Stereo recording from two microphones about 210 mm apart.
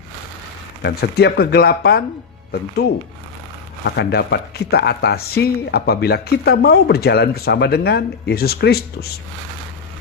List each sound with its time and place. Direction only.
0.8 s speech: 50° left (ahead or behind)
3.9 s speech: 50° left (ahead or behind)